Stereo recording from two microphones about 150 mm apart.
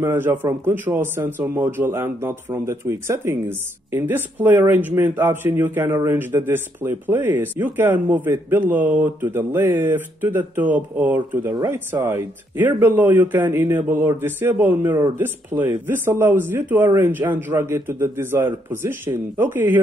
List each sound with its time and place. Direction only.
0.0 s a man's voice: 15° right (ahead or behind)